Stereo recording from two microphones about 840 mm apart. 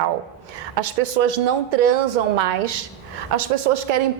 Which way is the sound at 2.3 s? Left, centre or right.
Right.